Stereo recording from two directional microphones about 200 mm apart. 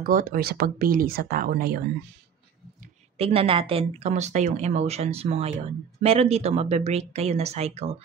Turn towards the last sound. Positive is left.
turn(degrees=-30)  # may be behind; listen again after turning